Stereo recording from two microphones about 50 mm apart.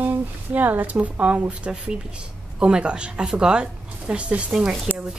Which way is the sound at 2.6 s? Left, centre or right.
Centre.